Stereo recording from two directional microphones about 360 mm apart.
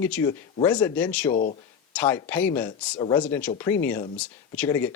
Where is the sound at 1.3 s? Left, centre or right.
Left.